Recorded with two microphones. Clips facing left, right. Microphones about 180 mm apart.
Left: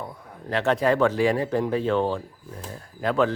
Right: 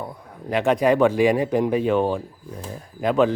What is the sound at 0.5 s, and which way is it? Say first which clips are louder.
Speech: right 3 dB; 15° right (ahead or behind).